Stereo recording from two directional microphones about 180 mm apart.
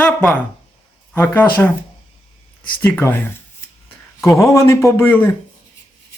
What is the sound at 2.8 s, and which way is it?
Speech, 10° left (ahead or behind).